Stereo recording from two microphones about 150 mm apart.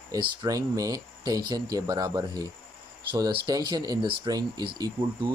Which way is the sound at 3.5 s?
25° right (ahead or behind).